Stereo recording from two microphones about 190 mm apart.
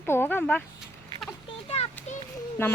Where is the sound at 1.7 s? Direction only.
30° left (ahead or behind).